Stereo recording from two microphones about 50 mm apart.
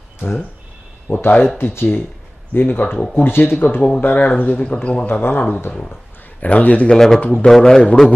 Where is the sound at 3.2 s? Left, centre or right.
Left.